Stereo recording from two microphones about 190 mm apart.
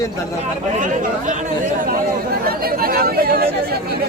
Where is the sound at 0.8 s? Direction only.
45° right (ahead or behind).